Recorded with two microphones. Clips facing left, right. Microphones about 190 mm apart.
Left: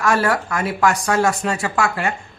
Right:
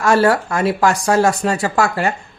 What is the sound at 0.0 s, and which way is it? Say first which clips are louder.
Speech: right 5 dB; 30° right (ahead or behind).